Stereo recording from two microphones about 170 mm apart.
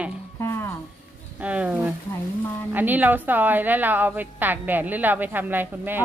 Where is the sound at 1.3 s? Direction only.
10° right (ahead or behind).